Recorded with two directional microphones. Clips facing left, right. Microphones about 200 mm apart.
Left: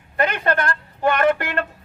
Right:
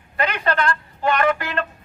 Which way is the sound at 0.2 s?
50° left (ahead or behind).